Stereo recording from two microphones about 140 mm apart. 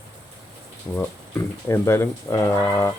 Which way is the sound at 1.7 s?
20° left (ahead or behind).